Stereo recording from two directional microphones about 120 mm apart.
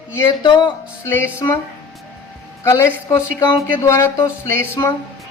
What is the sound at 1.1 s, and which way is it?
Speech, 20° left (ahead or behind).